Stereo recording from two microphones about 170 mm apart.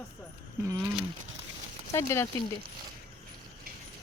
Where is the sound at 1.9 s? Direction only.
15° left (ahead or behind).